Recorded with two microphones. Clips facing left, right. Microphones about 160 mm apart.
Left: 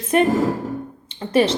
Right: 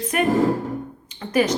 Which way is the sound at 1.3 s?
30° left (ahead or behind).